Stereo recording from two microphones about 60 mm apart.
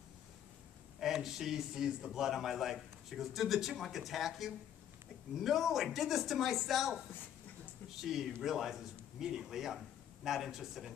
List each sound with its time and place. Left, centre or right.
0.9 s a man's voice: centre